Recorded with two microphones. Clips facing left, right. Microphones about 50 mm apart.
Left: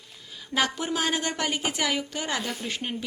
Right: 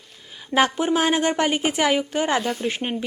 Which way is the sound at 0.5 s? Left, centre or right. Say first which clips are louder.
Right 7 dB; right.